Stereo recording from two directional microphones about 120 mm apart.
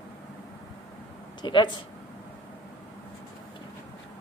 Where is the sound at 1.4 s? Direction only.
40° left (ahead or behind).